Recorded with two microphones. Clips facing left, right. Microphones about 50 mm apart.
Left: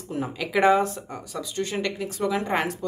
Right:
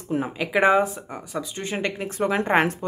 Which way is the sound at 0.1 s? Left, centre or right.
Right.